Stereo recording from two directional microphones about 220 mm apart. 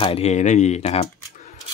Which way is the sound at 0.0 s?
25° left (ahead or behind).